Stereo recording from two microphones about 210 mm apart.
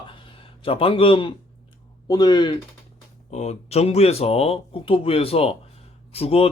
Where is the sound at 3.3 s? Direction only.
30° left (ahead or behind).